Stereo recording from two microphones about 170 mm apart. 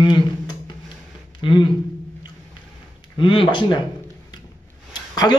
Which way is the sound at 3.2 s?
30° left (ahead or behind).